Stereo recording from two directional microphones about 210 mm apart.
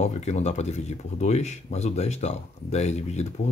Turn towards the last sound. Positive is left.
turn(degrees=30)  # may be behind; listen again after turning